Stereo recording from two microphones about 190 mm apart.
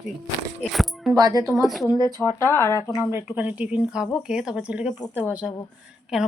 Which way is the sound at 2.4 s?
15° left (ahead or behind).